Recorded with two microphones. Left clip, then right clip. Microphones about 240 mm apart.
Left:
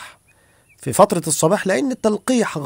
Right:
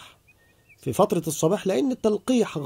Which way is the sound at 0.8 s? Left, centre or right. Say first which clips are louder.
Left 7 dB; left.